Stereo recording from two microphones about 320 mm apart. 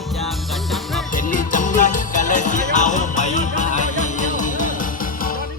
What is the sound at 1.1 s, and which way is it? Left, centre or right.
Music, left.